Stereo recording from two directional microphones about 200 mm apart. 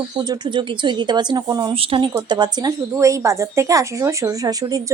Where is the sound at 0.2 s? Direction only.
20° right (ahead or behind).